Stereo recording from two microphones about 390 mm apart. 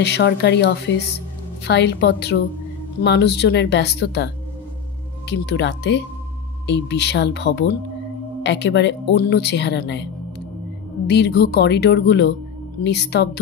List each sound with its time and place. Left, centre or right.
0.0 s speech: left
5.3 s speech: left
11.1 s speech: left